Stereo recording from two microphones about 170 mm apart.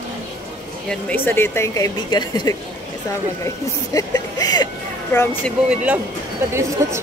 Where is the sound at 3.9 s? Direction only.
20° left (ahead or behind).